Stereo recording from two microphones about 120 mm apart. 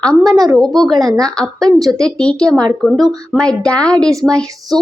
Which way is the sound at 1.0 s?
30° right (ahead or behind).